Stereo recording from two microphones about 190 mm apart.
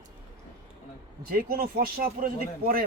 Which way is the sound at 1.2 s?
50° right (ahead or behind).